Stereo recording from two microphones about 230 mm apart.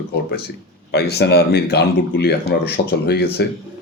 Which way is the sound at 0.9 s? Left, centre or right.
Left.